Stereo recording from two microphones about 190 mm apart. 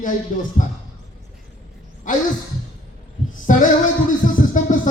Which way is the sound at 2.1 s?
45° left (ahead or behind).